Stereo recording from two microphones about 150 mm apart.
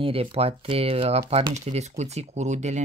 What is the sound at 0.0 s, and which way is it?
Speech, 40° right (ahead or behind).